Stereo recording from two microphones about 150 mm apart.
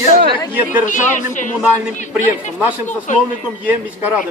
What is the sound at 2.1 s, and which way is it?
A man's voice, 10° right (ahead or behind).